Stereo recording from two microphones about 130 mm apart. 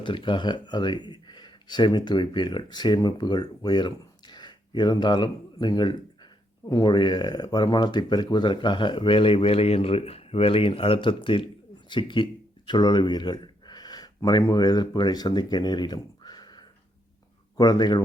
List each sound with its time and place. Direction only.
0.0 s speech: 40° left (ahead or behind)